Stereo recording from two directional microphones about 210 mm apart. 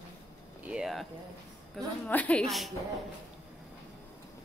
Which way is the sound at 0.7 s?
Centre (ahead or behind).